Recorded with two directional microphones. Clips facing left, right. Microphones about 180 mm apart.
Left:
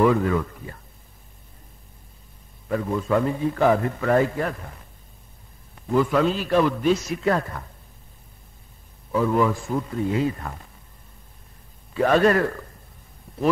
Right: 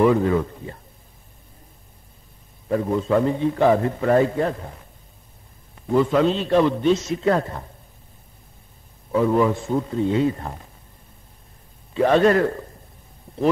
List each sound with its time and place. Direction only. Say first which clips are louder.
0.2 s a man's voice: right 3 dB; 30° right (ahead or behind)
2.7 s a man's voice: right 3 dB; 30° right (ahead or behind)
6.0 s a man's voice: right 2 dB; 25° right (ahead or behind)
9.1 s a man's voice: right 2 dB; 25° right (ahead or behind)
11.9 s a man's voice: right 2 dB; 25° right (ahead or behind)